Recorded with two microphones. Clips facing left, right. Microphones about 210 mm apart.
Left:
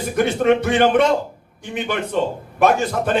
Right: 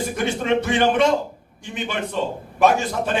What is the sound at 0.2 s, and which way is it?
Speech, 55° left (ahead or behind).